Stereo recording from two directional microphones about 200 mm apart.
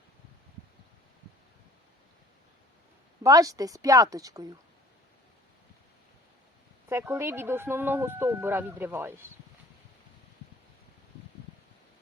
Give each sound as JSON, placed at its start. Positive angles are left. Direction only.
{"t": 3.2, "sound": "speech", "side_deg": -15}
{"t": 6.8, "sound": "speech", "side_deg": -10}